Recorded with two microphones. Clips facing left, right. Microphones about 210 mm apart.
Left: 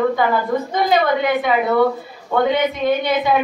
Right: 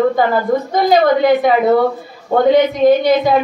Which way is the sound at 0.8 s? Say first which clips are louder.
Right 7 dB; 40° right (ahead or behind).